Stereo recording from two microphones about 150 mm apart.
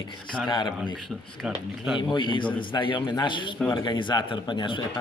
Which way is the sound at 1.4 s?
5° right (ahead or behind).